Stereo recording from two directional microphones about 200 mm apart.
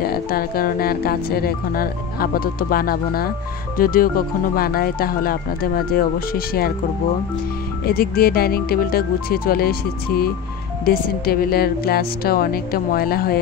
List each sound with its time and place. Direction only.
0.0 s speech: 50° left (ahead or behind)
7.8 s speech: 50° left (ahead or behind)